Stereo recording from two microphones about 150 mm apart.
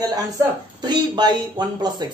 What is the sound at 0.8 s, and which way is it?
A man's voice, 30° right (ahead or behind).